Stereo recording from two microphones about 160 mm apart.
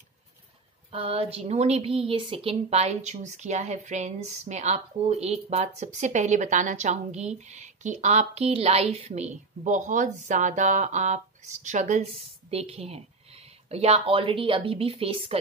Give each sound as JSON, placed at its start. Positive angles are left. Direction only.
{"t": 0.9, "sound": "a woman's voice", "side_deg": -35}